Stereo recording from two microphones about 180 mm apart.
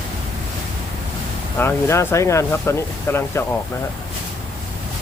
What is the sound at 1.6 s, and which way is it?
Speech, 15° left (ahead or behind).